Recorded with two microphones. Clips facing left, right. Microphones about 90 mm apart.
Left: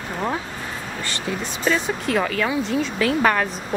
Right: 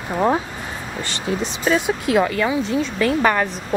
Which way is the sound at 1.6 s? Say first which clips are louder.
Right 2 dB; 10° right (ahead or behind).